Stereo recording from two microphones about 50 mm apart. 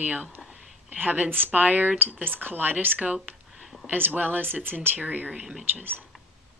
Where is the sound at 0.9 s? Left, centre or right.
Right.